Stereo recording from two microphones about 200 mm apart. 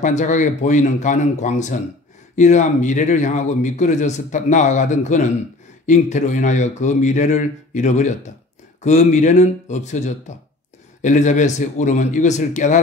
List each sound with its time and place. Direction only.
0.0 s a man's voice: 40° left (ahead or behind)